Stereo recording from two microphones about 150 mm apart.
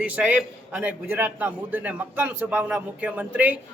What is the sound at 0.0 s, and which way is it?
A man's voice, 10° right (ahead or behind).